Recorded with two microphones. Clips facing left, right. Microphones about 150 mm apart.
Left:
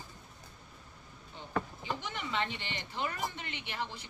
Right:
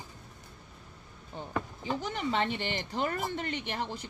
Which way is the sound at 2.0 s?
40° right (ahead or behind).